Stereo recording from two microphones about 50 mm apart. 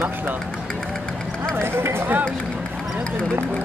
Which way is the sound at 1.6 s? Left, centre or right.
Right.